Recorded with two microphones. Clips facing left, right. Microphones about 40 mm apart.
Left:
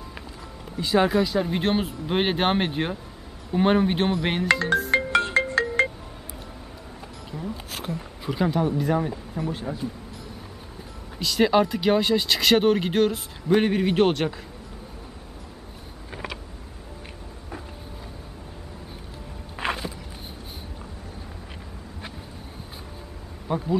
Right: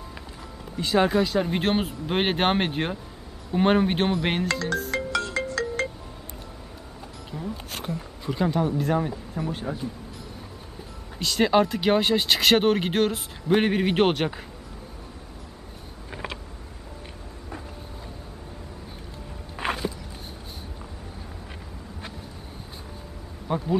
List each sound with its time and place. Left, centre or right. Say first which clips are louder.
0.7 s speech: left 1 dB; centre
4.5 s speech: left 6 dB; left
4.9 s music: left 6 dB; left
7.2 s speech: even; centre
11.1 s speech: left 1 dB; centre
16.1 s vehicle: even; centre
19.5 s walk: even; centre
23.5 s insect: even; centre